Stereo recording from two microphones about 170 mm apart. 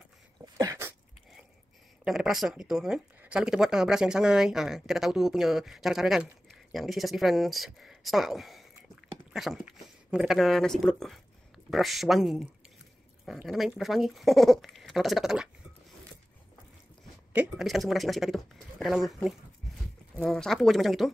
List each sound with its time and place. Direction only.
0.6 s sneeze: 20° right (ahead or behind)
2.0 s speech: centre (ahead or behind)
17.3 s speech: 5° right (ahead or behind)
20.2 s speech: 5° left (ahead or behind)